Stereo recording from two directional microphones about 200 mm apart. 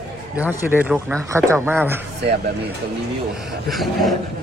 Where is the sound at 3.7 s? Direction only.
Centre (ahead or behind).